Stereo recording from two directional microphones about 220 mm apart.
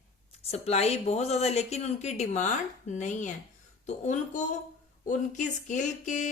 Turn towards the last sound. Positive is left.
turn(degrees=35)  # may be behind; listen again after turning